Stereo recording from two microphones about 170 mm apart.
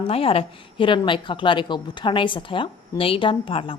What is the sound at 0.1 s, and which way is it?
A woman's voice, 35° left (ahead or behind).